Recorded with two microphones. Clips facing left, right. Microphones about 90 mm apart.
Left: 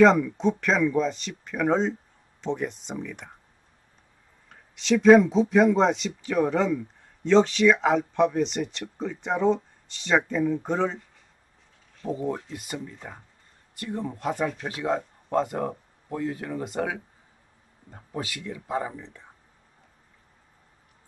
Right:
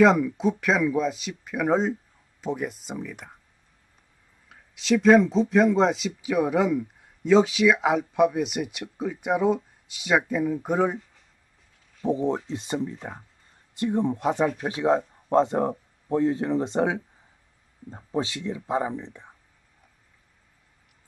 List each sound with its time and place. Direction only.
0.0 s speech: 5° right (ahead or behind)
4.5 s speech: centre (ahead or behind)
12.1 s speech: 20° right (ahead or behind)
12.9 s speech: 10° right (ahead or behind)
13.7 s speech: 20° right (ahead or behind)